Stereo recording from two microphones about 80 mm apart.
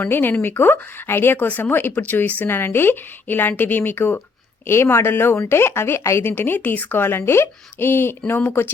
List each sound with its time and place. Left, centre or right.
0.0 s speech: left